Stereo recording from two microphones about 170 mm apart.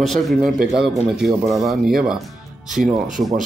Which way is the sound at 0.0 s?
Centre (ahead or behind).